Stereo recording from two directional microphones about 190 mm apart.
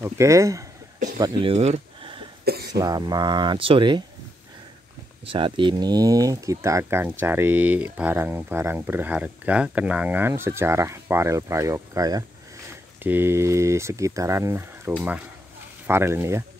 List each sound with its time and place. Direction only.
0.0 s speech: 15° right (ahead or behind)
1.1 s a sound: 25° right (ahead or behind)
2.7 s speech: 20° right (ahead or behind)
5.2 s speech: 25° right (ahead or behind)